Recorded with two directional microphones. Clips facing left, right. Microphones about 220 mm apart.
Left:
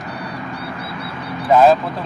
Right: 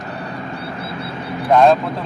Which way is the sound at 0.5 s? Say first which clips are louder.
Right 1 dB; 25° right (ahead or behind).